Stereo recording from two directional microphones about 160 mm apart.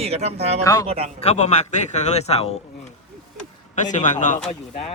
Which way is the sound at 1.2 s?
45° left (ahead or behind).